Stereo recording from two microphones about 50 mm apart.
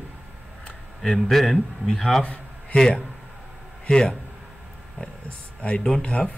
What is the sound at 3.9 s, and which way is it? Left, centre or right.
Speech, centre.